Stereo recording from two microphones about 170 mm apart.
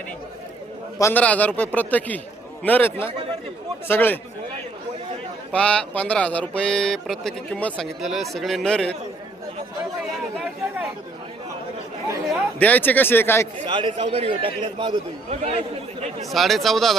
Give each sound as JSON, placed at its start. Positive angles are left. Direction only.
{"t": 0.9, "sound": "a man's voice", "side_deg": 15}
{"t": 5.5, "sound": "speech", "side_deg": 5}
{"t": 12.5, "sound": "a man's voice", "side_deg": 10}
{"t": 13.7, "sound": "a man's voice", "side_deg": -30}
{"t": 16.3, "sound": "speech", "side_deg": 0}